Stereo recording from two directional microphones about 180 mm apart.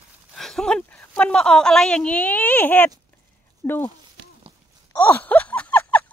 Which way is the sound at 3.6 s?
10° left (ahead or behind).